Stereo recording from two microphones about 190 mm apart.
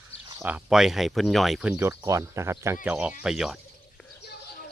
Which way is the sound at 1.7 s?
15° right (ahead or behind).